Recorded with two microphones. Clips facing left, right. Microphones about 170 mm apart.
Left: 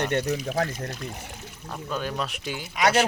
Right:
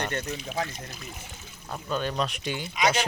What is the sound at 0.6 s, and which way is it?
Speech, 60° left (ahead or behind).